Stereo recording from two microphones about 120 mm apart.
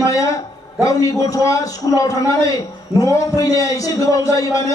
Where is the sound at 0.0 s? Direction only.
30° left (ahead or behind).